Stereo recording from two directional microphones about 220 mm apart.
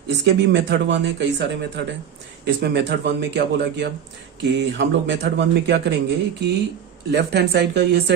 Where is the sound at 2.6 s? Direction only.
50° right (ahead or behind).